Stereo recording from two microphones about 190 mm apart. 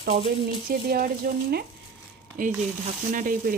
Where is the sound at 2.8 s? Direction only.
45° right (ahead or behind).